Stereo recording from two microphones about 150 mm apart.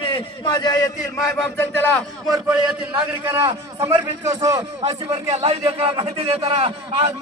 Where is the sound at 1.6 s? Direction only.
10° left (ahead or behind).